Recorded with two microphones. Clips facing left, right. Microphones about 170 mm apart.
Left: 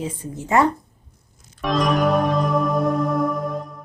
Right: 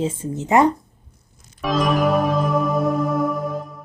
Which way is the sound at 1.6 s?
Centre (ahead or behind).